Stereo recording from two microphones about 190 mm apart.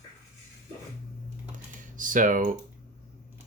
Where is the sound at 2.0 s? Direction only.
45° right (ahead or behind).